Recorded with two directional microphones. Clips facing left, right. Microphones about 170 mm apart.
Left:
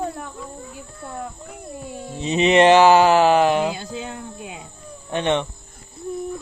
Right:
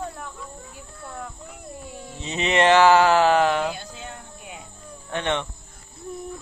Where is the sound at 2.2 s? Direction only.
20° left (ahead or behind).